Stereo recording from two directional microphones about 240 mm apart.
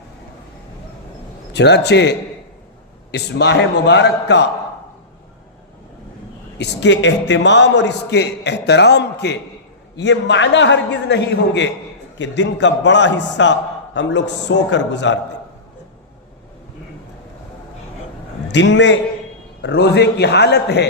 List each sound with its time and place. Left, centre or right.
1.5 s a man's voice: left
6.6 s a man's voice: left
18.4 s a man's voice: left